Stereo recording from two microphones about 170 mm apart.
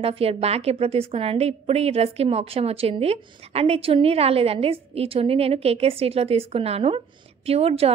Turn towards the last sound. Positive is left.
turn(degrees=-35)  # may be behind; listen again after turning